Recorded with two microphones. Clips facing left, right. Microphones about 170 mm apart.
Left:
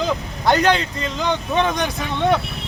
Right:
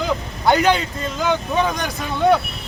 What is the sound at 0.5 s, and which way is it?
Speech, 10° right (ahead or behind).